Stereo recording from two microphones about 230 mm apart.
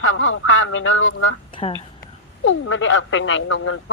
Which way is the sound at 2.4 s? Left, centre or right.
Left.